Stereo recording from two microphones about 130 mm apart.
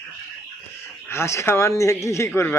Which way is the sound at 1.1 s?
20° left (ahead or behind).